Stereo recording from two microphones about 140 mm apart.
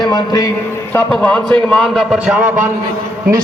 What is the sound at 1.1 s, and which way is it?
A man's voice, 5° left (ahead or behind).